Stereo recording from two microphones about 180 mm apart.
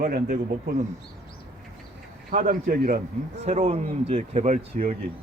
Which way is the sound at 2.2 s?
50° right (ahead or behind).